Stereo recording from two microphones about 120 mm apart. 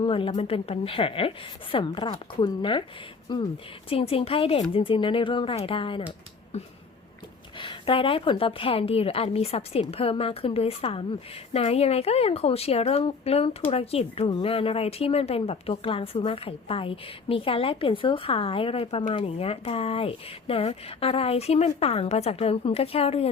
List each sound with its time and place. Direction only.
0.0 s speech: 45° left (ahead or behind)
1.7 s a woman's voice: 40° left (ahead or behind)
3.8 s speech: 50° left (ahead or behind)
7.6 s a woman's voice: 45° left (ahead or behind)